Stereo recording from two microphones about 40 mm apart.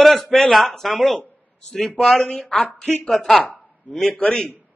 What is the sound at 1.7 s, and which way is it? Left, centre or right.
Speech, centre.